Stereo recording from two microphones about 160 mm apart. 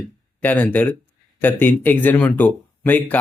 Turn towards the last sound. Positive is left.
turn(degrees=10)  # may be behind; listen again after turning